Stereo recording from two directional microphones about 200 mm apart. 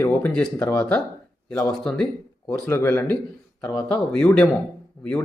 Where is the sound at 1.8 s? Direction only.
5° left (ahead or behind).